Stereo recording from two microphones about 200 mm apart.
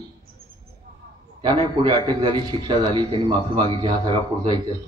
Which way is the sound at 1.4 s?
25° right (ahead or behind).